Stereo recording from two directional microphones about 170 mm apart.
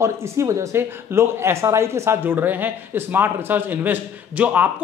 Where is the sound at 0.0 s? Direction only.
15° right (ahead or behind).